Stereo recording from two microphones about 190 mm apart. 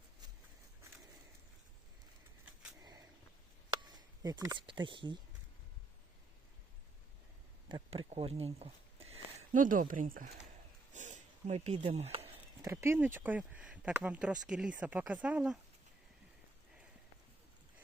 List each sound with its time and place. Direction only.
3.9 s speech: 20° right (ahead or behind)
7.7 s speech: 30° right (ahead or behind); by 10.3 s 45° right (ahead or behind)
10.9 s a sound: 40° right (ahead or behind)
12.6 s speech: 15° right (ahead or behind)